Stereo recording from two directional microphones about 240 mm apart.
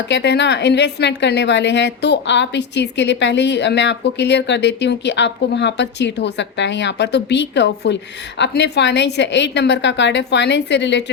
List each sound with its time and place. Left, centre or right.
0.1 s a woman's voice: left